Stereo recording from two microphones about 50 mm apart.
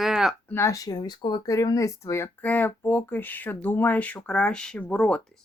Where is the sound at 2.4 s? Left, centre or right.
Left.